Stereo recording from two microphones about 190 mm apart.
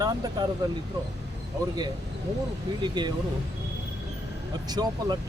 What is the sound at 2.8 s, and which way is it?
Speech, 25° right (ahead or behind).